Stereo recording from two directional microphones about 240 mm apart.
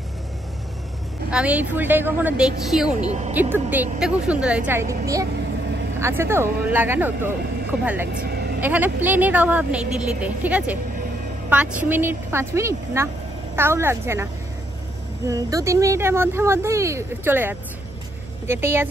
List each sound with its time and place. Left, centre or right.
1.3 s speech: centre
3.0 s speech: right
3.3 s speech: centre
8.1 s vehicle: right
8.5 s speech: centre